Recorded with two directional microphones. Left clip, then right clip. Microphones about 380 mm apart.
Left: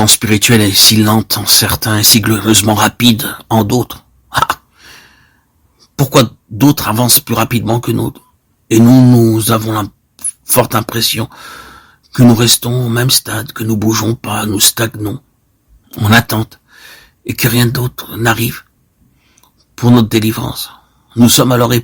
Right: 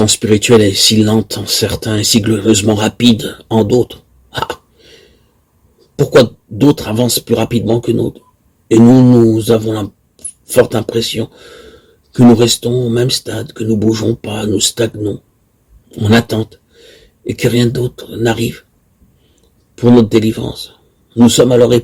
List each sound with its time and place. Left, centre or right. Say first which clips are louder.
0.0 s speech: left 1 dB; left
6.6 s speech: even; left